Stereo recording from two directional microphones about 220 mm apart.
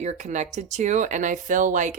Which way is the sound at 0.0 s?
35° right (ahead or behind).